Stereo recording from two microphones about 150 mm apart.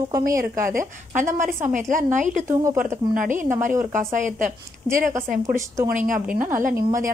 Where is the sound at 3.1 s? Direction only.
60° right (ahead or behind).